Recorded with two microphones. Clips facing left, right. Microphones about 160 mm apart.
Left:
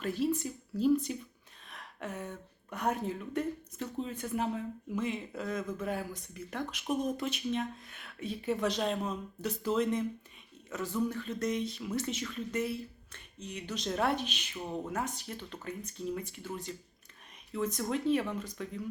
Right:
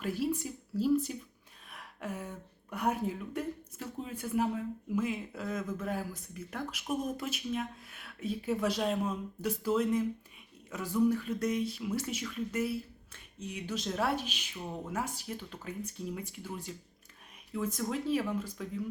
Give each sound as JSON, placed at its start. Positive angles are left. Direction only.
{"t": 0.0, "sound": "speech", "side_deg": -10}